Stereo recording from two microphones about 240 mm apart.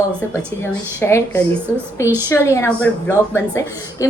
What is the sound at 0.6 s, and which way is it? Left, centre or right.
A woman's voice, centre.